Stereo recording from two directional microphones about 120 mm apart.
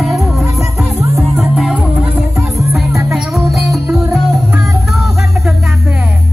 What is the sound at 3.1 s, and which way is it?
Music, centre (ahead or behind).